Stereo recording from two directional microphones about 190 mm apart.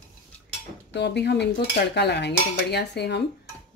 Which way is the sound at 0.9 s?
65° left (ahead or behind).